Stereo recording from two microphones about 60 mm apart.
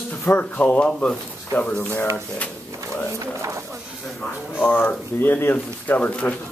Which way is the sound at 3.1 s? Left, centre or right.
Right.